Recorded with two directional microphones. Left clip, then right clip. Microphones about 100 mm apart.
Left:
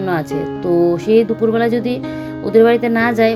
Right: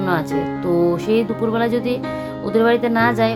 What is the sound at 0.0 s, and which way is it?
Speech, 15° left (ahead or behind).